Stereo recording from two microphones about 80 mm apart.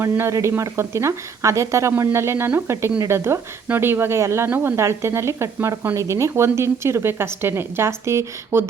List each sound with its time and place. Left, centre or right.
0.0 s speech: right